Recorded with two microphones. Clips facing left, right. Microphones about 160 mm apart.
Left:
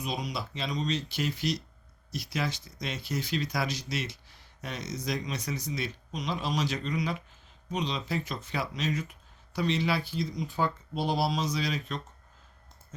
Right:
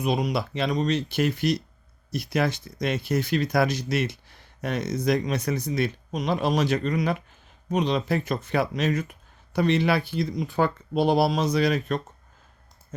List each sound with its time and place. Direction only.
0.0 s speech: 60° right (ahead or behind)